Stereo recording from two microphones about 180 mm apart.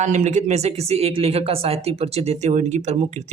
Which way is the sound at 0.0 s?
40° right (ahead or behind).